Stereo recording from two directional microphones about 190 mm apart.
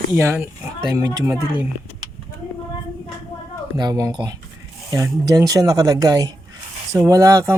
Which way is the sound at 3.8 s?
20° right (ahead or behind).